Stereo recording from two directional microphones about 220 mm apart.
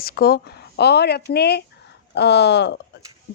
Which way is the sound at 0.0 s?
45° left (ahead or behind).